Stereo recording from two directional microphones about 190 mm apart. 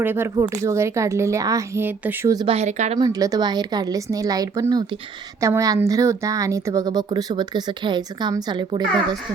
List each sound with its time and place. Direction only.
0.0 s speech: 10° right (ahead or behind)
2.5 s speech: 35° right (ahead or behind)
3.0 s a woman's voice: 20° right (ahead or behind)